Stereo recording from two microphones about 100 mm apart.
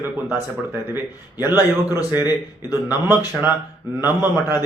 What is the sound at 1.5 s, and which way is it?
Speech, 20° right (ahead or behind).